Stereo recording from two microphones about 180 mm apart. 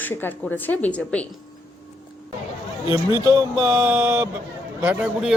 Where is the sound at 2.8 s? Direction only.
25° right (ahead or behind).